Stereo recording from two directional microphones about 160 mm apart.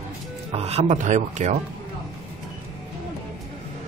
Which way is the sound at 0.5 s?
40° right (ahead or behind).